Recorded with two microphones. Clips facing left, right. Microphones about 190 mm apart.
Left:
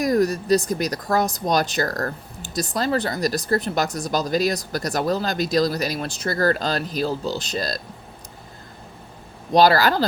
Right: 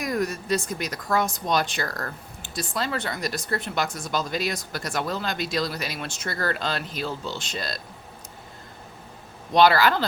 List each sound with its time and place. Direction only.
0.0 s a woman's voice: 35° left (ahead or behind)
9.5 s a woman's voice: 35° left (ahead or behind)